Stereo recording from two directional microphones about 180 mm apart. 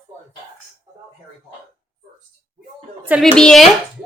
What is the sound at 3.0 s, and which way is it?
Speech, 5° right (ahead or behind).